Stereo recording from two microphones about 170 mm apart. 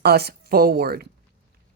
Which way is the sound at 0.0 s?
70° right (ahead or behind).